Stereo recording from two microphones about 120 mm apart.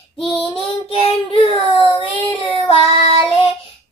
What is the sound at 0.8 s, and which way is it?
Child singing, 50° left (ahead or behind).